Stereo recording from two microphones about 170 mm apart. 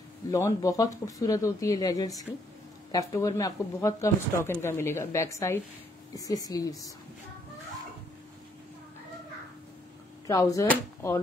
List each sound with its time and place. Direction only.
0.3 s speech: 20° left (ahead or behind)
10.2 s speech: 20° left (ahead or behind)